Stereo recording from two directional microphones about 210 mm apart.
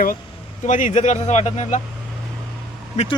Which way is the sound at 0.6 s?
35° left (ahead or behind).